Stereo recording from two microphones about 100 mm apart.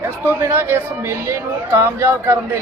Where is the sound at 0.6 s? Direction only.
25° right (ahead or behind).